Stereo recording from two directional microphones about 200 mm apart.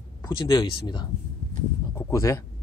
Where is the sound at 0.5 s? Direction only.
20° left (ahead or behind).